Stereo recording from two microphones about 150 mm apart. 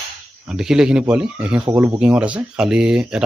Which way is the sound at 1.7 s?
20° right (ahead or behind).